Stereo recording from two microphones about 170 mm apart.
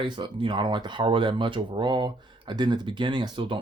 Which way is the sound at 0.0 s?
30° right (ahead or behind).